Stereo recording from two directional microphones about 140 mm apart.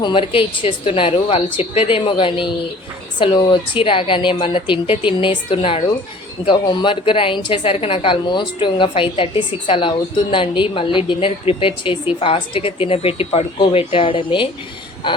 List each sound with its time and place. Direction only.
0.0 s a woman's voice: 35° left (ahead or behind)